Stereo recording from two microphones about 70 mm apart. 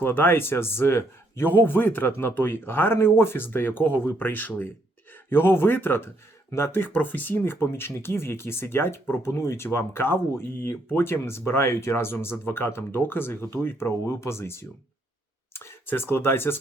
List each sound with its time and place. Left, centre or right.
0.0 s speech: left